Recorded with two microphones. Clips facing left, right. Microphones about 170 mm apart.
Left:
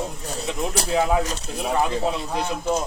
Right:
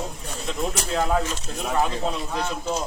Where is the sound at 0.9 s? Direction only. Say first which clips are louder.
Left 3 dB; 10° left (ahead or behind).